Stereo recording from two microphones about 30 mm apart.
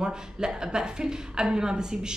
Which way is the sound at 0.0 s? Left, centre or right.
Right.